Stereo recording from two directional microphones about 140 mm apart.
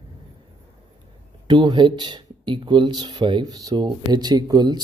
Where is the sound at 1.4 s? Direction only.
30° right (ahead or behind).